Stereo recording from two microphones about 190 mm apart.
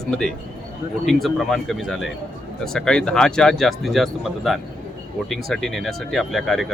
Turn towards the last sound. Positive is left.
turn(degrees=0)  # may be behind; listen again after turning